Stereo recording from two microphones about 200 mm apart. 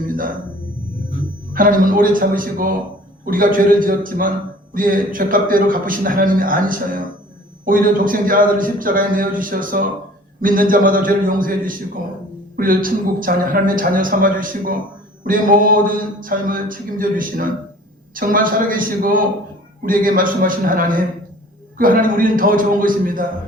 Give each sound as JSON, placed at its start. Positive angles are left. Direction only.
{"t": 1.5, "sound": "speech", "side_deg": -45}